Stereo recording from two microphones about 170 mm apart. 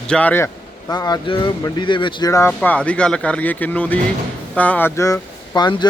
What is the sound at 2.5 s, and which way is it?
Speech, 5° left (ahead or behind).